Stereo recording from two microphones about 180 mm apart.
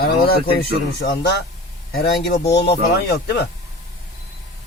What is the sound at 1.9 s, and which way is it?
Speech, 60° left (ahead or behind).